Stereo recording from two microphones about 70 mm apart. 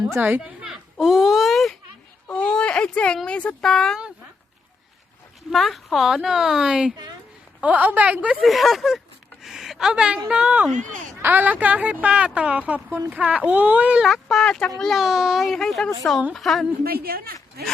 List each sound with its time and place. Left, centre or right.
0.1 s a woman's voice: right
0.6 s a sound: centre
2.3 s a sound: centre
3.2 s speech: centre
5.5 s a woman's voice: centre
7.6 s a woman's voice: right
8.4 s a woman's voice: centre; by 14.0 s right
14.0 s a woman's voice: centre